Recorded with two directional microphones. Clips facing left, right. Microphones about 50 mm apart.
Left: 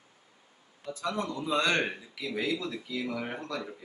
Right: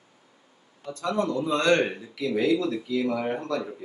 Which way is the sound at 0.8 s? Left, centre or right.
Centre.